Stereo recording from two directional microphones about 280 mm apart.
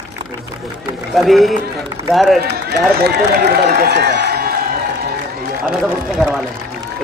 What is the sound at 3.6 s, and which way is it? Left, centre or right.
Speech, right.